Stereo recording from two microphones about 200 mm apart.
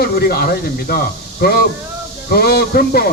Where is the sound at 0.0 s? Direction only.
50° left (ahead or behind).